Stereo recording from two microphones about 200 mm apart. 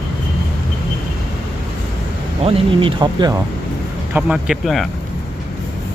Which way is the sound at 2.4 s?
25° right (ahead or behind).